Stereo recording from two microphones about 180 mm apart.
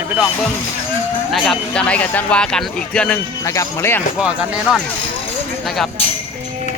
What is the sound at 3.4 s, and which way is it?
Speech, 15° left (ahead or behind).